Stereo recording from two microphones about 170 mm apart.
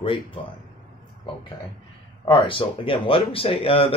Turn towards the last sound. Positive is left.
turn(degrees=35)  # may be behind; listen again after turning